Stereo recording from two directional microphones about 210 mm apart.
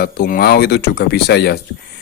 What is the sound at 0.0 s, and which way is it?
Speech, 45° left (ahead or behind).